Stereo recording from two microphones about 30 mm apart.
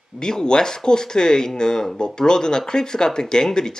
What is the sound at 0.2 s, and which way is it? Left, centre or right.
Speech, left.